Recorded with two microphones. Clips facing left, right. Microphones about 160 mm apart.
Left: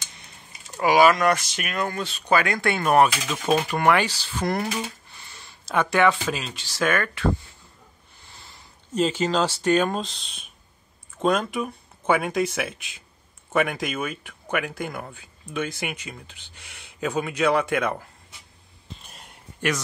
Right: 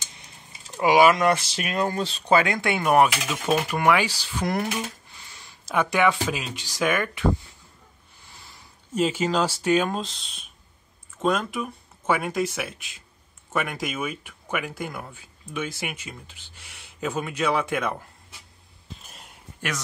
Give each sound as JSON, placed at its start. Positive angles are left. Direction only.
{"t": 0.7, "sound": "speech", "side_deg": -20}
{"t": 4.6, "sound": "speech", "side_deg": 0}
{"t": 8.9, "sound": "speech", "side_deg": -5}
{"t": 18.9, "sound": "a sound", "side_deg": 0}